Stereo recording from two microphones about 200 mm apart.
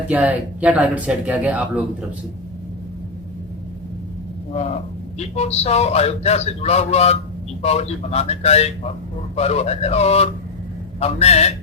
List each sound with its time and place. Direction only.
0.1 s speech: 10° right (ahead or behind)
4.5 s a man's voice: 30° left (ahead or behind)